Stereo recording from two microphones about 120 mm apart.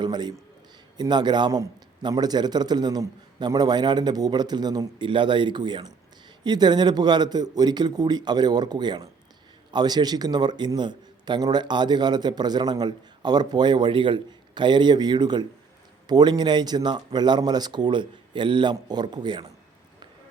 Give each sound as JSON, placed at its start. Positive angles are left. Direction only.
{"t": 0.0, "sound": "a man's voice", "side_deg": -35}